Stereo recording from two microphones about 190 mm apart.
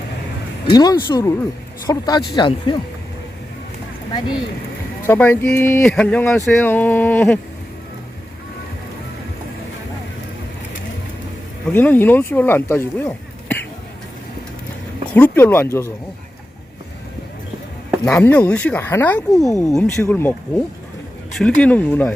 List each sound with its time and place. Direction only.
0.7 s speech: 20° left (ahead or behind)
5.0 s speech: 10° left (ahead or behind)
11.7 s speech: 10° left (ahead or behind)
15.1 s speech: 10° left (ahead or behind)
18.0 s speech: 10° left (ahead or behind)
21.3 s speech: 5° left (ahead or behind)